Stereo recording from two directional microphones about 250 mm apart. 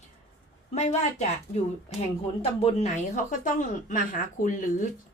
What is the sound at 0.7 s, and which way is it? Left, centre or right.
Speech, left.